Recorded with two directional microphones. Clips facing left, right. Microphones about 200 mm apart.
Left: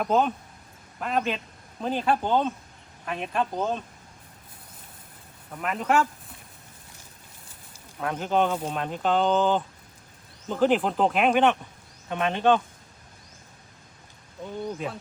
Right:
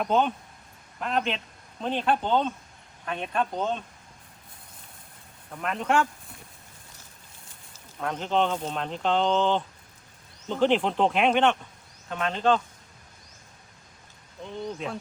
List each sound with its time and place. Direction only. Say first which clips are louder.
0.0 s speech: left 1 dB; 5° left (ahead or behind)
5.5 s speech: left 1 dB; 5° left (ahead or behind)
7.7 s speech: left 1 dB; 5° left (ahead or behind)
12.0 s speech: left 2 dB; 20° left (ahead or behind)
14.4 s speech: left 2 dB; 5° left (ahead or behind)